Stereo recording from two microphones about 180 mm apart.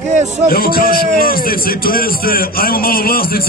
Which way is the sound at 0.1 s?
40° right (ahead or behind).